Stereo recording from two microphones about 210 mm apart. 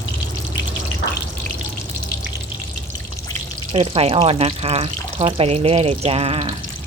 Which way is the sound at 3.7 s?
25° right (ahead or behind).